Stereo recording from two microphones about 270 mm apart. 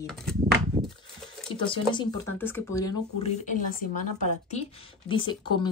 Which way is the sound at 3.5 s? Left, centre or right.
Left.